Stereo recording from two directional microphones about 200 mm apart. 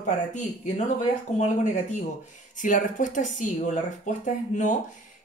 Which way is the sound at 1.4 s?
35° left (ahead or behind).